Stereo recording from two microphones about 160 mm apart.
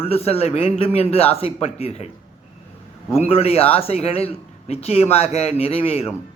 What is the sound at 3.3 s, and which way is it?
A man's voice, 40° left (ahead or behind).